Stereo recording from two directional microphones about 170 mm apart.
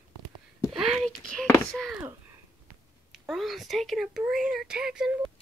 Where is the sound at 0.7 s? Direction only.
5° right (ahead or behind).